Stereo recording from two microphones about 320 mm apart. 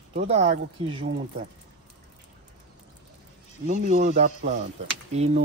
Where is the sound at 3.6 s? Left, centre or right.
Right.